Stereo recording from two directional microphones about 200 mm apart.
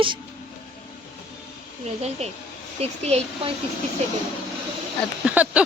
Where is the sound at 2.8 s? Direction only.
30° right (ahead or behind).